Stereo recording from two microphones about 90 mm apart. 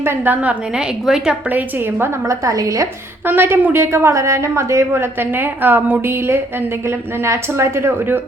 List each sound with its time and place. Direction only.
0.0 s a woman's voice: 25° right (ahead or behind)
1.0 s a woman's voice: 5° right (ahead or behind)
1.5 s a woman's voice: 20° right (ahead or behind)
2.2 s a woman's voice: 35° right (ahead or behind)
3.2 s a woman's voice: 25° right (ahead or behind)